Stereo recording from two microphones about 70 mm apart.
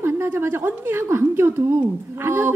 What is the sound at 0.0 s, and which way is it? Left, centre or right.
A woman's voice, right.